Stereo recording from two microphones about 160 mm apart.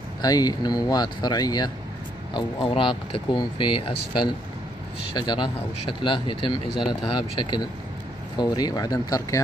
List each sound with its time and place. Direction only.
0.2 s speech: 25° left (ahead or behind)